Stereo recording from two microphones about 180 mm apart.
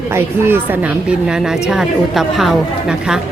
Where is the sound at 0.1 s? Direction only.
15° right (ahead or behind).